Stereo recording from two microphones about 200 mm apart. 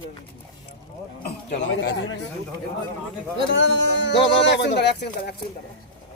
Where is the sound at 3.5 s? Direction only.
65° left (ahead or behind).